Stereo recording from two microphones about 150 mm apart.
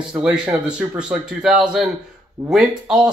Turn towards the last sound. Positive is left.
turn(degrees=-5)  # may be behind; listen again after turning